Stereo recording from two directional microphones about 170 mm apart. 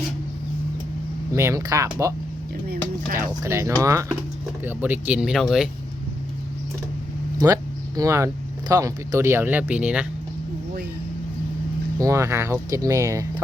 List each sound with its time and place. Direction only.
1.3 s speech: 15° right (ahead or behind)
3.2 s speech: 15° right (ahead or behind); by 5.6 s centre (ahead or behind)
7.4 s speech: 20° right (ahead or behind)
11.9 s speech: 15° right (ahead or behind)